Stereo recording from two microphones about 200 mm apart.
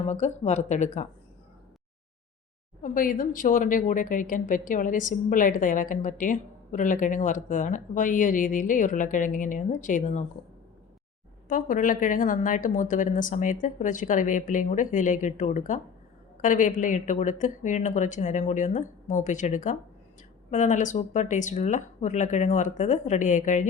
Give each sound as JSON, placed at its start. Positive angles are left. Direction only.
{"t": 0.0, "sound": "a woman's voice", "side_deg": 35}
{"t": 2.8, "sound": "a woman's voice", "side_deg": 45}
{"t": 11.4, "sound": "a woman's voice", "side_deg": 40}